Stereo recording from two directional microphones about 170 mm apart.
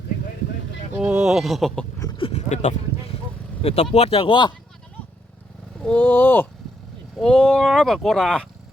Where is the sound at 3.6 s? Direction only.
35° left (ahead or behind).